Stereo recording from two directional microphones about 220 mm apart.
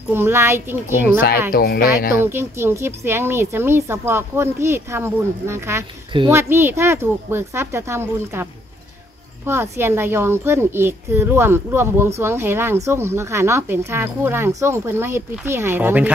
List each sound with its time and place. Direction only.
0.1 s a child's voice: 10° right (ahead or behind)
1.5 s speech: 45° left (ahead or behind)
2.2 s a child's voice: 10° right (ahead or behind)
9.5 s a child's voice: 10° right (ahead or behind)